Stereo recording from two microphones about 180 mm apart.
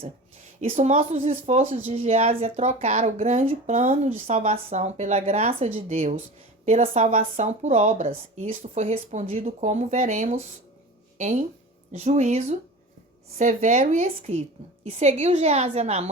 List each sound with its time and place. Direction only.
0.6 s speech: 40° right (ahead or behind)